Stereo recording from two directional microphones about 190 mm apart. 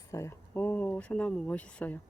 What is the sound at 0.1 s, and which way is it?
Speech, 15° left (ahead or behind).